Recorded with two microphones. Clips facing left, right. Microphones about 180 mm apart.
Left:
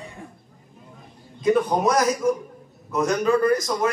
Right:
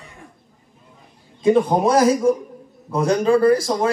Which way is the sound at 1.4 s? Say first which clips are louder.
Right 4 dB; 30° right (ahead or behind).